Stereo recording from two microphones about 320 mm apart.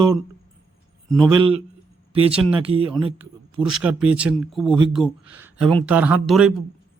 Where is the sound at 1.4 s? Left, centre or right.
Centre.